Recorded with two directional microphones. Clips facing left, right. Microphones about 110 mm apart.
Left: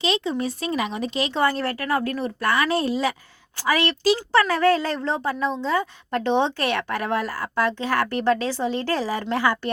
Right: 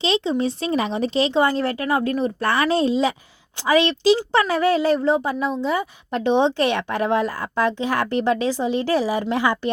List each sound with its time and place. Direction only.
0.0 s speech: 25° right (ahead or behind)
1.3 s a woman's voice: 20° right (ahead or behind)